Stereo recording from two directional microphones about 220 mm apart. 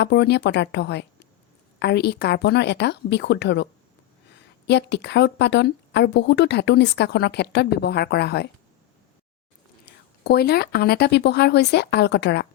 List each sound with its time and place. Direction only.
0.0 s speech: 50° left (ahead or behind)
9.8 s speech: 45° left (ahead or behind)